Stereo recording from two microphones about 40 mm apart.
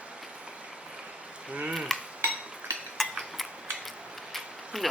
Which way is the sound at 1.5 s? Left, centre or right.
Right.